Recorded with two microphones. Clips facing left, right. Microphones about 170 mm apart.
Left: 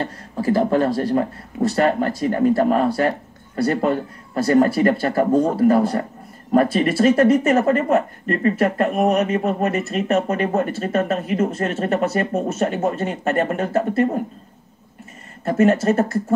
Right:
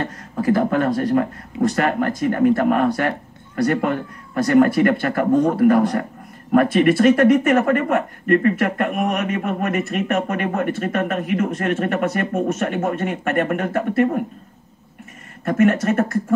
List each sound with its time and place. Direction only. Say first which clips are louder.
0.0 s speech: right 1 dB; 35° left (ahead or behind)
15.4 s speech: left 1 dB; 30° left (ahead or behind)